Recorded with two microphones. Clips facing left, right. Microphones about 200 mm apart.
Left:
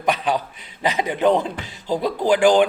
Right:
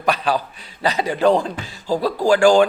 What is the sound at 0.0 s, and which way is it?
A man's voice, 20° left (ahead or behind).